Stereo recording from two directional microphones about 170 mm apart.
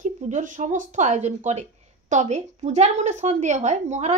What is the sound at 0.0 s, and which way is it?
Speech, 45° right (ahead or behind).